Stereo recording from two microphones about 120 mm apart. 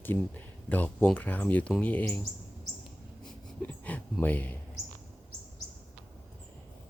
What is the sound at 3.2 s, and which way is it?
Speech, 10° left (ahead or behind).